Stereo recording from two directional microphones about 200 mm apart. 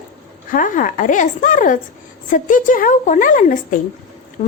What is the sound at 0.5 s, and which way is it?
A woman's voice, 40° left (ahead or behind).